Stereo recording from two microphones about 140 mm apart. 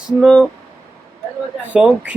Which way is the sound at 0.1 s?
5° right (ahead or behind).